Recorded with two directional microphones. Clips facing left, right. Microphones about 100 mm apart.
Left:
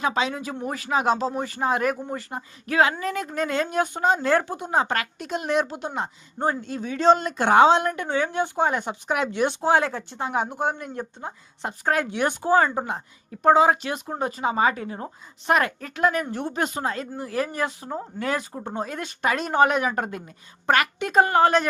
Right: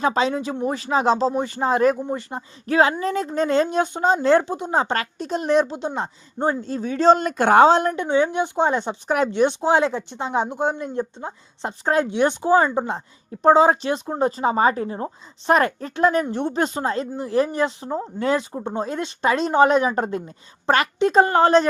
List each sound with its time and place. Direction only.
0.0 s speech: 35° right (ahead or behind)
7.9 s speech: 20° right (ahead or behind)